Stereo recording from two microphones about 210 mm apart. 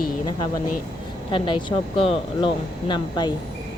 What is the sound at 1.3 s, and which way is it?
Speech, 25° left (ahead or behind).